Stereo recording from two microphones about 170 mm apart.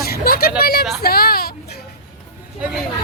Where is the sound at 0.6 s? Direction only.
65° left (ahead or behind).